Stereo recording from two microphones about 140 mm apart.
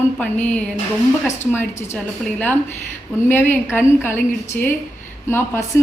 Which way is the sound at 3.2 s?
15° left (ahead or behind).